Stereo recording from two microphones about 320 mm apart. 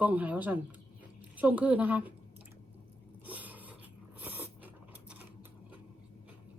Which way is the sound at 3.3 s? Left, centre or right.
Centre.